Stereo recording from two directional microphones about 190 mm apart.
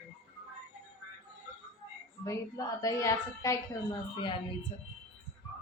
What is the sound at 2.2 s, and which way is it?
A woman's voice, 15° left (ahead or behind).